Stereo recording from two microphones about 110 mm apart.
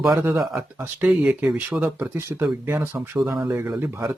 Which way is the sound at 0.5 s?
20° right (ahead or behind).